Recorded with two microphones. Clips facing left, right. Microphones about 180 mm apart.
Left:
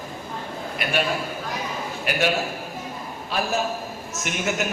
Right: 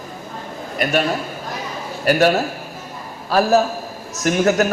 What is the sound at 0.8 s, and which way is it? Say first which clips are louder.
Speech: right 6 dB; 45° right (ahead or behind).